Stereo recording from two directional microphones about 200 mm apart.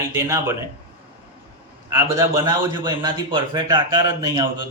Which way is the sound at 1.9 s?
15° right (ahead or behind).